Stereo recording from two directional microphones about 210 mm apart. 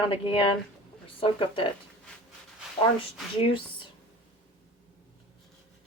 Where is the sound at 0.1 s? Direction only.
25° left (ahead or behind).